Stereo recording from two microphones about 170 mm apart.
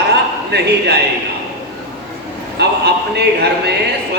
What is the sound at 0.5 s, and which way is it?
Speech, 75° right (ahead or behind).